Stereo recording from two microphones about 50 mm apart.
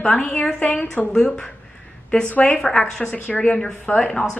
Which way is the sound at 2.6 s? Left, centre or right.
Centre.